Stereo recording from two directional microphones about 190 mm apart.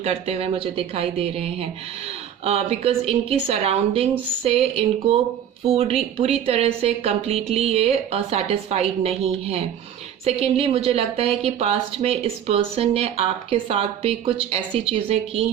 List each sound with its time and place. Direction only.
0.0 s speech: 35° right (ahead or behind)